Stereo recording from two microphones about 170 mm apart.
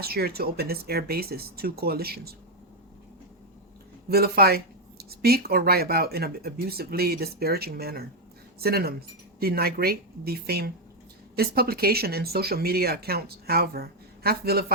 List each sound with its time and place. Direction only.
0.0 s speech: 65° right (ahead or behind)
4.1 s speech: 65° right (ahead or behind)